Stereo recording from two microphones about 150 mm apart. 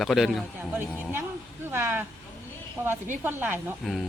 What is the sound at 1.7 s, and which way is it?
Speech, 15° right (ahead or behind).